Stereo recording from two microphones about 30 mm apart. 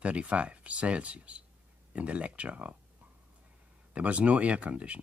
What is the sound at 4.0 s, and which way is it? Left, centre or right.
Speech, right.